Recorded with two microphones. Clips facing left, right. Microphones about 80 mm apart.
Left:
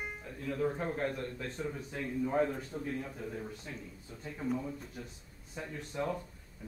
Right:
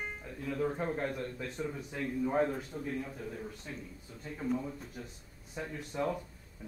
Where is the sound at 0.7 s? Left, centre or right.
Right.